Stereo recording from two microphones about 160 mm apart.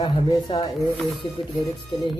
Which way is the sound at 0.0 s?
30° left (ahead or behind).